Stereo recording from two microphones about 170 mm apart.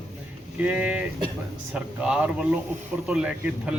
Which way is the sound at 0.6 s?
5° right (ahead or behind).